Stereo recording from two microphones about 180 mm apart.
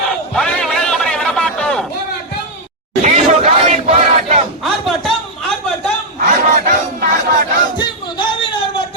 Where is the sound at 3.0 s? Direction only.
40° right (ahead or behind).